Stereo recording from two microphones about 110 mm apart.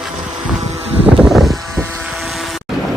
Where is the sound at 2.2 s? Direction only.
Centre (ahead or behind).